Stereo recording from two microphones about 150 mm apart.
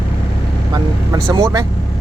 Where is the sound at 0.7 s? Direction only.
30° right (ahead or behind).